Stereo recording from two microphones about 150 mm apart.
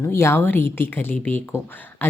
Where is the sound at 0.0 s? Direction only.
20° left (ahead or behind).